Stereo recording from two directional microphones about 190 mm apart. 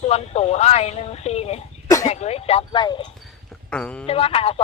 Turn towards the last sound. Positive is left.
turn(degrees=30)  # may be behind; listen again after turning